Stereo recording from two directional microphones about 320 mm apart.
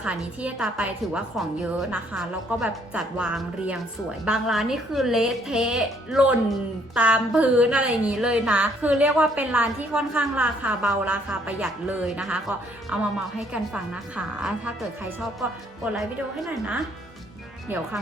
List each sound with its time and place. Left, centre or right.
0.0 s a woman's voice: centre